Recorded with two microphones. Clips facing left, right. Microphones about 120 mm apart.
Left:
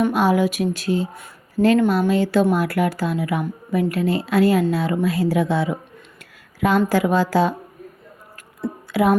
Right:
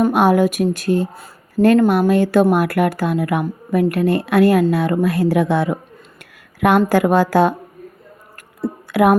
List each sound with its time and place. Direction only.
0.1 s speech: 55° right (ahead or behind)
8.9 s speech: 55° right (ahead or behind)